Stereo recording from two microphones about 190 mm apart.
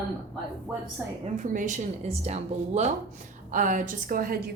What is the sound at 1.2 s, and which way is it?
A woman's voice, 40° right (ahead or behind).